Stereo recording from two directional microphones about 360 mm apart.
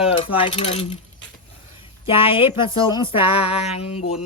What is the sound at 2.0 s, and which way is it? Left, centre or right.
Child singing, centre.